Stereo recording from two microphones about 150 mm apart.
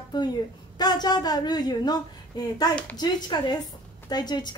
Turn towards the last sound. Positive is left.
turn(degrees=30)  # may be behind; listen again after turning